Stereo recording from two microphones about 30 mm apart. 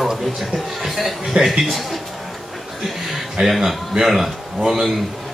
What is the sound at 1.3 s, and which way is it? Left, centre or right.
Speech, right.